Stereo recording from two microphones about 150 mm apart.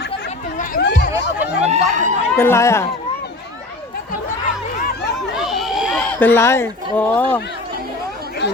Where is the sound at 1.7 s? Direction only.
55° right (ahead or behind).